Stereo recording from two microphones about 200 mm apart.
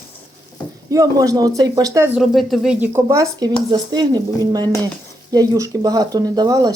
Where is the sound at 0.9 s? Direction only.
15° right (ahead or behind).